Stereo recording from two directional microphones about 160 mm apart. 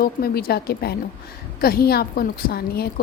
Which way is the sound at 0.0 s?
70° left (ahead or behind).